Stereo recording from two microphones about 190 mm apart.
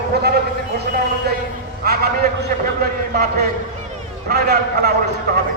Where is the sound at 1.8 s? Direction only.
55° right (ahead or behind).